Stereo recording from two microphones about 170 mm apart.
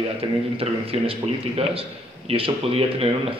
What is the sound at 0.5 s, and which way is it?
Speech, 35° right (ahead or behind).